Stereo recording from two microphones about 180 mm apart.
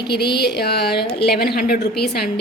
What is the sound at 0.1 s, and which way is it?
A woman's voice, 65° left (ahead or behind).